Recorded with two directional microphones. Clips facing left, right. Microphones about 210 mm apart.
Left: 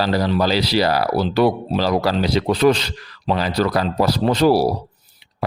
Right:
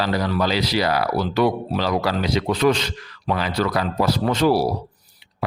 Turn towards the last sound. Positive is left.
turn(degrees=35)  # may be behind; listen again after turning